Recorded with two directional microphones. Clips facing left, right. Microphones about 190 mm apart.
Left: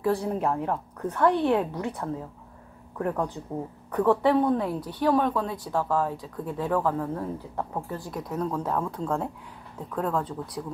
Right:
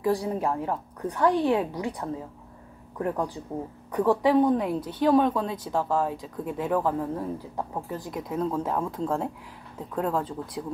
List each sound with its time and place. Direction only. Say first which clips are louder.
0.0 s a woman's voice: even; 10° right (ahead or behind)